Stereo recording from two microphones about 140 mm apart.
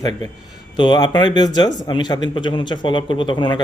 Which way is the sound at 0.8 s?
30° left (ahead or behind).